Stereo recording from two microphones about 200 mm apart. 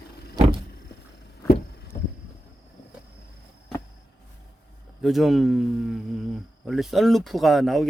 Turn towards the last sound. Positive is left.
turn(degrees=0)  # may be behind; listen again after turning